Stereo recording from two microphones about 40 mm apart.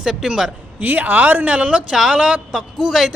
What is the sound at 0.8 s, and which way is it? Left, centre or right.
Speech, right.